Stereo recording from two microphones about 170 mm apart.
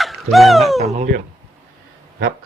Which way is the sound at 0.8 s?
40° right (ahead or behind).